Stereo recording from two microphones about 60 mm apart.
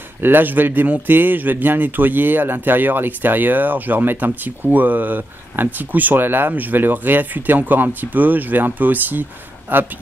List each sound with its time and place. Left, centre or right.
0.2 s speech: right